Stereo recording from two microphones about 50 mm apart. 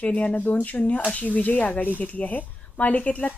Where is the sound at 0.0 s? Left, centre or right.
Left.